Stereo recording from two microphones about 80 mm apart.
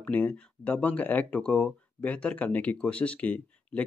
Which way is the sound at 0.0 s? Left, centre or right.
Centre.